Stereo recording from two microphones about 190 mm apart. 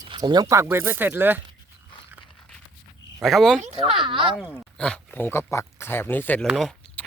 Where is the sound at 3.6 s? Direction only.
30° right (ahead or behind).